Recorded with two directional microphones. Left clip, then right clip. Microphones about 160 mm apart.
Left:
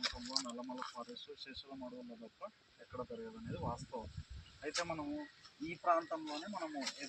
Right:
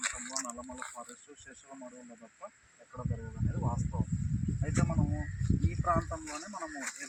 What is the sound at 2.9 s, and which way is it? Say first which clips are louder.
Speech: right 2 dB; 10° right (ahead or behind).